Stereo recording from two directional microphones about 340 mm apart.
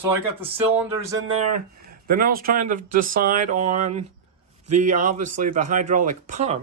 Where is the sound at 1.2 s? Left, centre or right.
Right.